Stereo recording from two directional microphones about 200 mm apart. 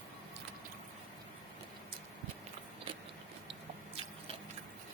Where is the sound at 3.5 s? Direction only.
30° right (ahead or behind).